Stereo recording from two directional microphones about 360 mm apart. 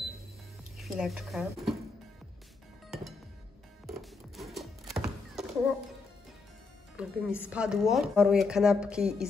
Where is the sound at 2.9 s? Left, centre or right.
Centre.